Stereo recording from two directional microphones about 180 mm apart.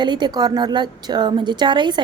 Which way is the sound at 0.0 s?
25° right (ahead or behind).